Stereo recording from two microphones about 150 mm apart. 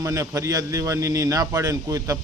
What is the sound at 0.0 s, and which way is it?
A man's voice, 20° right (ahead or behind).